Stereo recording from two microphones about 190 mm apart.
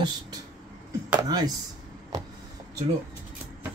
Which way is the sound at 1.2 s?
20° right (ahead or behind).